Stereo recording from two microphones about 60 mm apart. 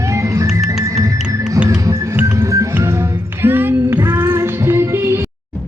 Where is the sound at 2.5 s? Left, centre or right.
Right.